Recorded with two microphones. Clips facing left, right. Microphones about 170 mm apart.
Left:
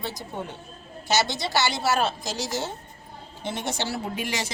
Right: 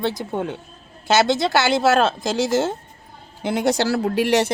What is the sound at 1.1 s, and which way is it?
A woman's voice, 55° right (ahead or behind).